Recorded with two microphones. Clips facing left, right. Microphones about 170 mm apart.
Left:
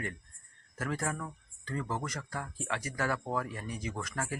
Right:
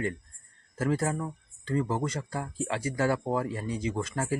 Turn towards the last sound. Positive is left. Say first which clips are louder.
# right 7 dB
turn(degrees=-30)  # may be behind; listen again after turning